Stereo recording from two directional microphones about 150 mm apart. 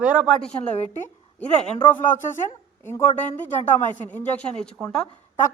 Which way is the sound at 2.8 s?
15° left (ahead or behind).